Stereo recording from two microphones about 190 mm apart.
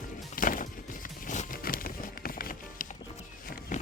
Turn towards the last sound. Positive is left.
turn(degrees=45)  # may be behind; listen again after turning